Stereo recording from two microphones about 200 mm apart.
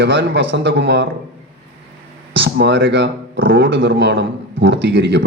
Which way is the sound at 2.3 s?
60° right (ahead or behind).